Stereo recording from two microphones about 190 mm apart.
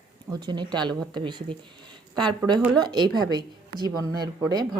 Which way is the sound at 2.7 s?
20° right (ahead or behind).